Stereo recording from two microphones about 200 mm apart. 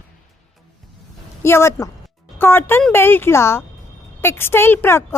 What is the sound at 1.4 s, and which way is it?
A woman's voice, 15° left (ahead or behind).